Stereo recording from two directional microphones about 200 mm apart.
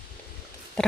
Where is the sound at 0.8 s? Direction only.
5° left (ahead or behind).